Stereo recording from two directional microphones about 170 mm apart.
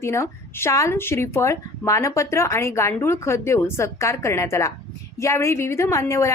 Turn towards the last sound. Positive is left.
turn(degrees=15)  # may be behind; listen again after turning